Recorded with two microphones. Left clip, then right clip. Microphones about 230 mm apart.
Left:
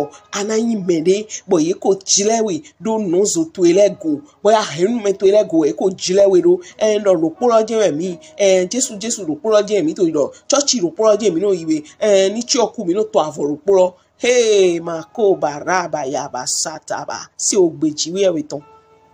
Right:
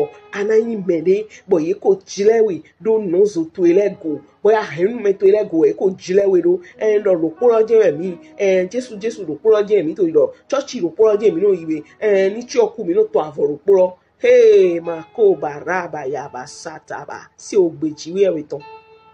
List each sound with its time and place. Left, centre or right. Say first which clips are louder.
0.3 s a man's voice: right 3 dB; left